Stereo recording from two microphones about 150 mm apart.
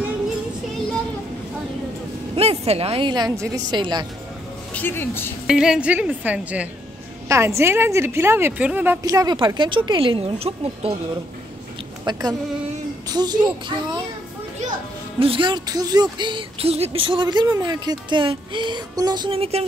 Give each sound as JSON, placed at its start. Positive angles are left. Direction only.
{"t": 2.3, "sound": "a woman's voice", "side_deg": -45}
{"t": 4.7, "sound": "speech", "side_deg": 15}
{"t": 5.5, "sound": "a woman's voice", "side_deg": -5}
{"t": 12.0, "sound": "a woman's voice", "side_deg": -25}
{"t": 15.1, "sound": "speech", "side_deg": -35}